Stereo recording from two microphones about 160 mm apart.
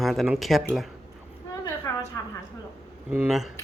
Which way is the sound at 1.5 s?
20° left (ahead or behind).